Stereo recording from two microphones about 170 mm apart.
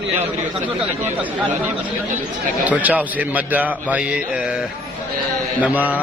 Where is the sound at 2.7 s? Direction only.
10° right (ahead or behind).